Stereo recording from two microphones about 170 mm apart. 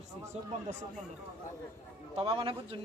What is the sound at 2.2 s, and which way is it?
Speech, 35° right (ahead or behind).